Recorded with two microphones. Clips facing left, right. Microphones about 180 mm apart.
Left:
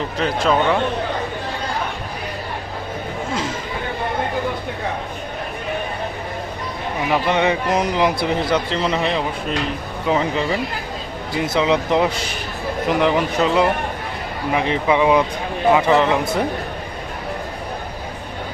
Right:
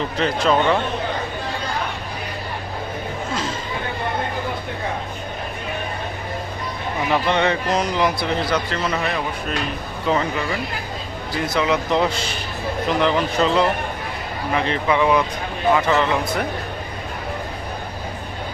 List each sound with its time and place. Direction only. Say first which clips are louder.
0.2 s speech: even; centre (ahead or behind)
7.1 s a man's voice: left 1 dB; 10° left (ahead or behind)